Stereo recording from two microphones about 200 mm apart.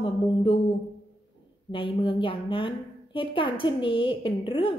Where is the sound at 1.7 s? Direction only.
25° left (ahead or behind).